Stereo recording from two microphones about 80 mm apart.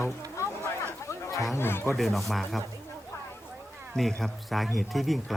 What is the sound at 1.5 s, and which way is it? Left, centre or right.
Speech, left.